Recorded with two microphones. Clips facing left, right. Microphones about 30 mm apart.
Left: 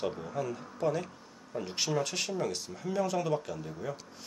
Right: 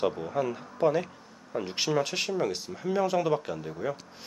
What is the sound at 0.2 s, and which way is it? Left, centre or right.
Speech, right.